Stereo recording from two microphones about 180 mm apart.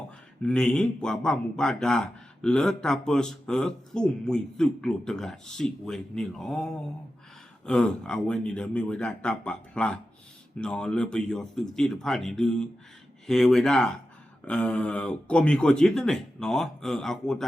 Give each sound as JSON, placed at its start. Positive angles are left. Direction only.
{"t": 0.4, "sound": "speech", "side_deg": 5}